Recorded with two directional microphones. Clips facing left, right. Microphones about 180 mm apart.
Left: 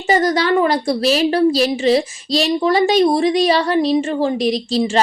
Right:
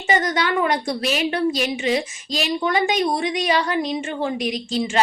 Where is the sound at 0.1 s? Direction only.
35° left (ahead or behind).